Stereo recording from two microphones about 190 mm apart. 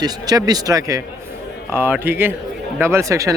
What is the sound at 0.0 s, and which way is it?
A man's voice, 20° right (ahead or behind).